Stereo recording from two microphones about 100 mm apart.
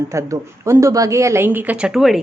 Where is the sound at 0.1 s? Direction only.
30° right (ahead or behind).